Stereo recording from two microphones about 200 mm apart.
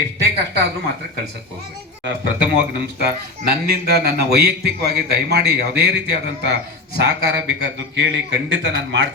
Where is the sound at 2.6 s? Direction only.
55° right (ahead or behind).